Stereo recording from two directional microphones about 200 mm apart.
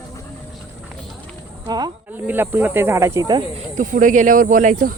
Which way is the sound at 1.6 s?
20° right (ahead or behind).